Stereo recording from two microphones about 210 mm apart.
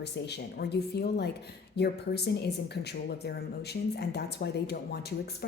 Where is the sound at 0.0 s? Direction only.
55° left (ahead or behind).